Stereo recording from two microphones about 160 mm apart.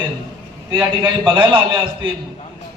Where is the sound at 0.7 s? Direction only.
15° right (ahead or behind).